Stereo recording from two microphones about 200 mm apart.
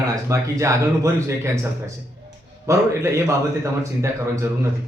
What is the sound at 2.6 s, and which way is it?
Speech, 15° right (ahead or behind).